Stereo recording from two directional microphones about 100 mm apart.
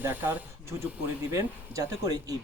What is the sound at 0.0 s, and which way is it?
Speech, 20° right (ahead or behind).